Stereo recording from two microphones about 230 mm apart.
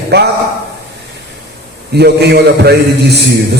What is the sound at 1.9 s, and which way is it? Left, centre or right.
A man's voice, right.